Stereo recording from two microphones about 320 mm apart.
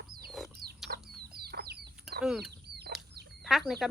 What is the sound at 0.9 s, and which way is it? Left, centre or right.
Bird flight, right.